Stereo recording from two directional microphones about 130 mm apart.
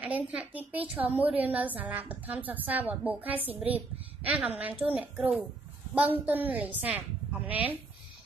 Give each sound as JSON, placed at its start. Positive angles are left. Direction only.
{"t": 0.0, "sound": "a woman's voice", "side_deg": -10}